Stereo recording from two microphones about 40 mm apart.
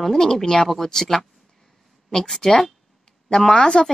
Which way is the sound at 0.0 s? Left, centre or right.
Centre.